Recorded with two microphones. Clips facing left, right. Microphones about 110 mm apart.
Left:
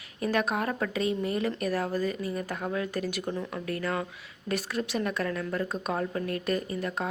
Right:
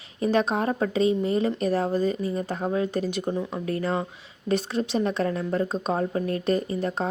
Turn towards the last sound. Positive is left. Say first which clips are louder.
# right 5 dB
turn(degrees=-30)  # may be behind; listen again after turning